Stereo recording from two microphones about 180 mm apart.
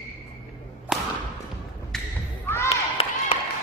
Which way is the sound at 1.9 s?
5° left (ahead or behind).